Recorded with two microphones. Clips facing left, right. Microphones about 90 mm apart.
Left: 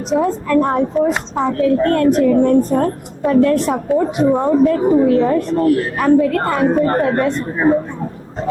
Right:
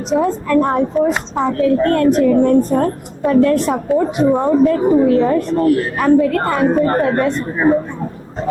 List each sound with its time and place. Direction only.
0.1 s a woman's voice: 20° right (ahead or behind)